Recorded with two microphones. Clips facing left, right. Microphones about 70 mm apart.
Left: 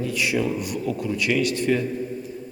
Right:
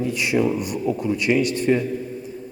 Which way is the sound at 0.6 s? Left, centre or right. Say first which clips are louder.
Right 3 dB; right.